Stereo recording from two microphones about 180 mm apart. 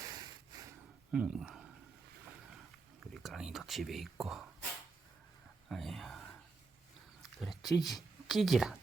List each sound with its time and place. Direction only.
0.0 s a sound: 20° right (ahead or behind)
1.1 s speech: 5° right (ahead or behind)
3.0 s speech: centre (ahead or behind)
5.6 s speech: centre (ahead or behind)
7.2 s a sound: centre (ahead or behind)
7.8 s speech: centre (ahead or behind)